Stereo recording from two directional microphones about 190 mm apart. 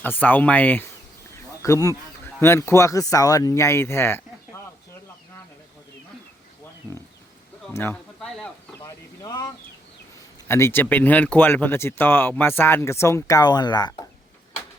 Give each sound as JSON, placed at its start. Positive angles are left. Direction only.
{"t": 0.0, "sound": "speech", "side_deg": 10}
{"t": 7.7, "sound": "speech", "side_deg": 10}
{"t": 8.8, "sound": "speech", "side_deg": 20}
{"t": 10.5, "sound": "speech", "side_deg": 10}